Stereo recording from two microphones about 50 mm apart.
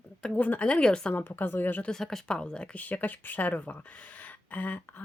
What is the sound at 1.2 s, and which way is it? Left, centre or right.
Speech, left.